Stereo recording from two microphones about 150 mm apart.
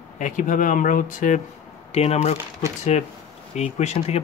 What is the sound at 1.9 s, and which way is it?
Speech, 45° left (ahead or behind).